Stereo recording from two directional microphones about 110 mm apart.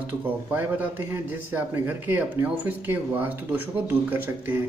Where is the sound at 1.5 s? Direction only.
20° right (ahead or behind).